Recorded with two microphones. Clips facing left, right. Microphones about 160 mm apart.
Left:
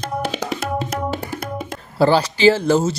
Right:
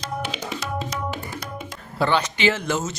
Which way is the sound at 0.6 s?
55° left (ahead or behind).